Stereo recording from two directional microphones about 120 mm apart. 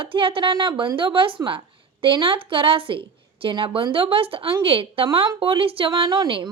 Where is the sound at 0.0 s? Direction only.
45° right (ahead or behind).